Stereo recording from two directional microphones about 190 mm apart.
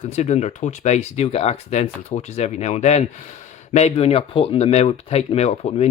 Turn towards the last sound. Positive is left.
turn(degrees=35)  # may be behind; listen again after turning